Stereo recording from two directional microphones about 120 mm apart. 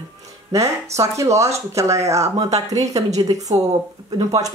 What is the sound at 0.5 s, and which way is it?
Speech, 25° right (ahead or behind).